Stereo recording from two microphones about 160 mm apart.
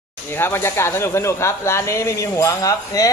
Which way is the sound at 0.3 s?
15° left (ahead or behind).